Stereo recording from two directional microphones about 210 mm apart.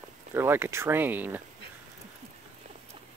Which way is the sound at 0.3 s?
10° right (ahead or behind).